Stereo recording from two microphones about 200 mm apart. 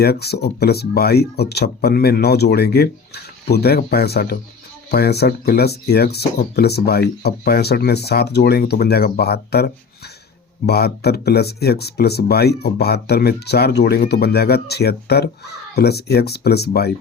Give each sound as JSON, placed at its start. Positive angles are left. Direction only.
{"t": 0.0, "sound": "speech", "side_deg": 55}